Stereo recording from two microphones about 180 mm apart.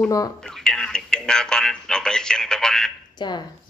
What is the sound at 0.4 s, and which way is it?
Speech, centre (ahead or behind).